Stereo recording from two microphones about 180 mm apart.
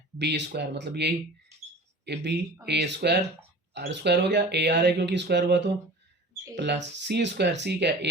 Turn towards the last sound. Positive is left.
turn(degrees=-70)  # may be behind; listen again after turning